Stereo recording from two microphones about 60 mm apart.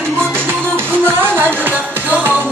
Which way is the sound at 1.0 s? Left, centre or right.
Right.